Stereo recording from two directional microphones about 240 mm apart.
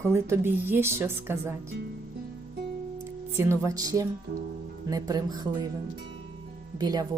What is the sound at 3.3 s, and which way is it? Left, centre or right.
Speech, centre.